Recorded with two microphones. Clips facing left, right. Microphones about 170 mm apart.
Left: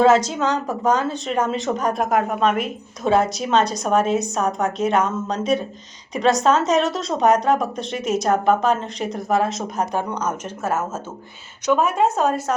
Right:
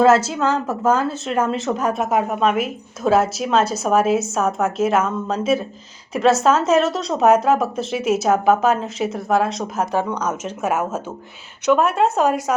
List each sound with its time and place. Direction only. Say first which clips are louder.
0.0 s a woman's voice: right 1 dB; 5° right (ahead or behind)
10.1 s speech: right 1 dB; 10° left (ahead or behind)
10.4 s speech: right 2 dB; 15° right (ahead or behind)